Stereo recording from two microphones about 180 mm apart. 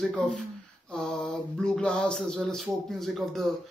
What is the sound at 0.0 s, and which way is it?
Speech, 5° left (ahead or behind).